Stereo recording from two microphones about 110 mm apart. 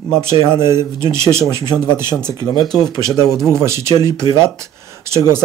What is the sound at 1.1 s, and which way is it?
Speech, 25° right (ahead or behind).